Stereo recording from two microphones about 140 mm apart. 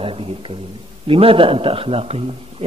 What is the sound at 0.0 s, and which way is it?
A man's voice, 40° right (ahead or behind).